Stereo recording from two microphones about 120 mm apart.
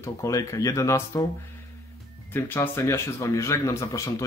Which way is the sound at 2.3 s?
20° left (ahead or behind).